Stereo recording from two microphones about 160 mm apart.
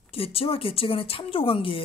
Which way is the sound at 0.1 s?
35° left (ahead or behind).